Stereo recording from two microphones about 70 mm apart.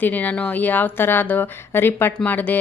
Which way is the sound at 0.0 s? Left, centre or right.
Left.